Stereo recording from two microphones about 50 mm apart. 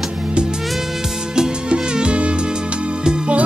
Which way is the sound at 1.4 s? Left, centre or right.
Centre.